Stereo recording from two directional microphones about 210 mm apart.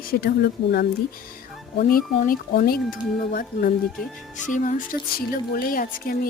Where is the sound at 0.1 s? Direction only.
50° left (ahead or behind).